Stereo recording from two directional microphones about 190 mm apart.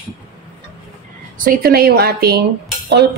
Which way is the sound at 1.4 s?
50° right (ahead or behind).